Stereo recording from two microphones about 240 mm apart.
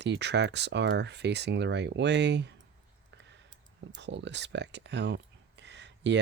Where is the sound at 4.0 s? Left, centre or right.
Right.